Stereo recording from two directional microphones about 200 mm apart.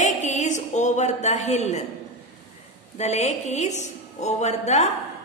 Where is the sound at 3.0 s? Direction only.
35° left (ahead or behind).